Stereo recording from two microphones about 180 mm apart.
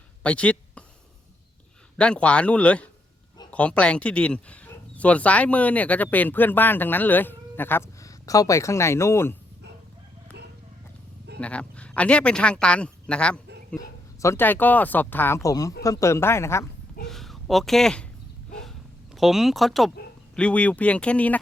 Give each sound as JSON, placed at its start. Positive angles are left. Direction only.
{"t": 0.2, "sound": "a sound", "side_deg": 5}
{"t": 2.0, "sound": "speech", "side_deg": 5}
{"t": 11.3, "sound": "speech", "side_deg": 5}
{"t": 13.8, "sound": "speech", "side_deg": 20}
{"t": 17.1, "sound": "a sound", "side_deg": 0}
{"t": 19.1, "sound": "speech", "side_deg": 0}